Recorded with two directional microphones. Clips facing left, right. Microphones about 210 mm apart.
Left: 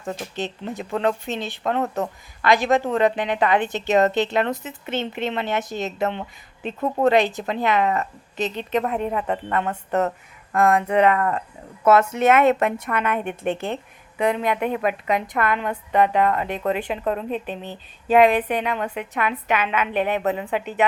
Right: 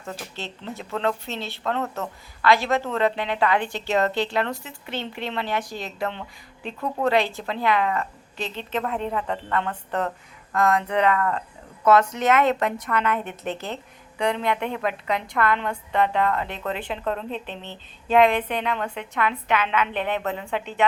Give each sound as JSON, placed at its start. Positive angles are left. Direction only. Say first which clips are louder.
{"t": 0.0, "sound": "a woman's voice", "louder": "left 6 dB", "side_deg": 15}
{"t": 12.5, "sound": "speech", "louder": "left 3 dB", "side_deg": 25}
{"t": 13.0, "sound": "a woman's voice", "louder": "left 1 dB", "side_deg": 15}